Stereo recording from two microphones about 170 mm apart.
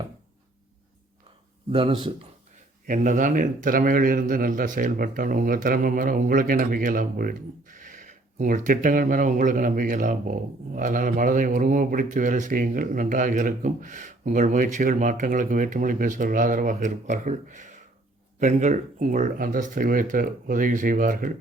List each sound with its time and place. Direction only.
1.7 s speech: 30° right (ahead or behind)
2.8 s a man's voice: 50° right (ahead or behind)